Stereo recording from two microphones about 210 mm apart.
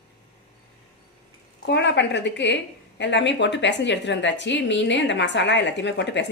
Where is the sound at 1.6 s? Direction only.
55° left (ahead or behind).